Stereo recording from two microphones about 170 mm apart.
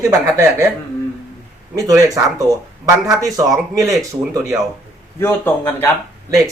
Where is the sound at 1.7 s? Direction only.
20° right (ahead or behind).